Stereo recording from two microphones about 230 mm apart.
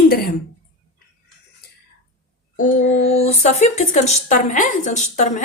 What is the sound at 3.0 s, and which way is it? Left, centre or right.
Speech, left.